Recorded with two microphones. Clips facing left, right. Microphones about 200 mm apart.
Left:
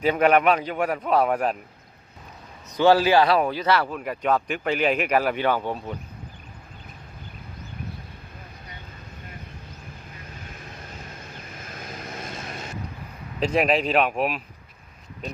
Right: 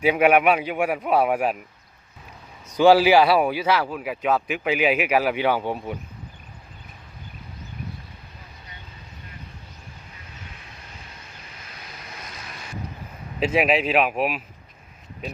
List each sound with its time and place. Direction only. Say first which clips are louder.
0.0 s speech: right 1 dB; 10° right (ahead or behind)
2.6 s speech: right 3 dB; 10° right (ahead or behind)
11.5 s vehicle: left 7 dB; 50° left (ahead or behind)
13.4 s speech: right 1 dB; 5° right (ahead or behind)